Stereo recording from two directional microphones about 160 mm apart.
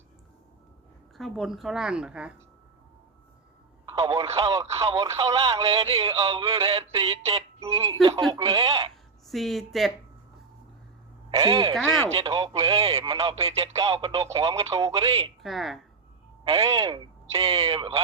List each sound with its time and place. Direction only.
1.1 s a woman's voice: centre (ahead or behind)
3.8 s a sound: 20° right (ahead or behind)
4.4 s radio: 20° right (ahead or behind)
4.8 s speech: 20° right (ahead or behind)
5.1 s speech: 35° right (ahead or behind)
6.6 s synthetic singing: 35° right (ahead or behind)
6.9 s a sound: 35° right (ahead or behind)
8.3 s speech: 30° right (ahead or behind)
9.2 s a woman's voice: centre (ahead or behind)
11.3 s speech: 30° right (ahead or behind)
15.4 s speech: centre (ahead or behind)
16.4 s speech: 30° right (ahead or behind)